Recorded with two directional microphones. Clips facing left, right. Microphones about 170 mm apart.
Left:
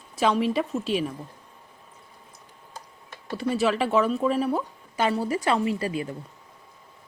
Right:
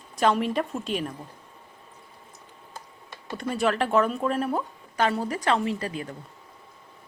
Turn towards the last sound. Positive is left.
turn(degrees=5)  # may be behind; listen again after turning